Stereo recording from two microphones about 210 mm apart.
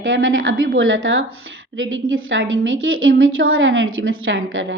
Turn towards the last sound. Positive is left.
turn(degrees=-65)  # may be behind; listen again after turning